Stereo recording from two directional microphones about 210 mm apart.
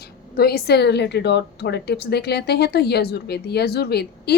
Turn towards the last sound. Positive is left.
turn(degrees=50)  # may be behind; listen again after turning